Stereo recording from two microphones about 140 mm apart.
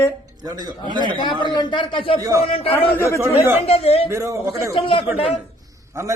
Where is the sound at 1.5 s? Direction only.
35° left (ahead or behind).